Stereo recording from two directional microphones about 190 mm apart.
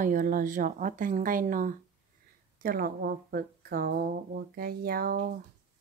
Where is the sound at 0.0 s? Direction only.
45° right (ahead or behind).